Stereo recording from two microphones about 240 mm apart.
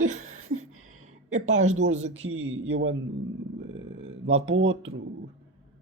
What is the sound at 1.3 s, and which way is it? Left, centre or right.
Speech, right.